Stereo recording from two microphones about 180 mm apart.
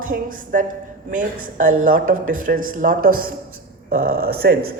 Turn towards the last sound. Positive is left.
turn(degrees=-60)  # may be behind; listen again after turning